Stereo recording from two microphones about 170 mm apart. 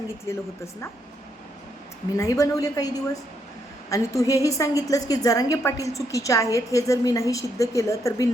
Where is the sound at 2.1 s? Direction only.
20° left (ahead or behind).